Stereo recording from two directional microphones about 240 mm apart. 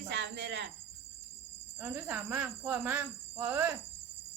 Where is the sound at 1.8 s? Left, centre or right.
Centre.